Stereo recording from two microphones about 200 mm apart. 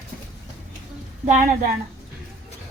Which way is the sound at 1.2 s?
35° right (ahead or behind).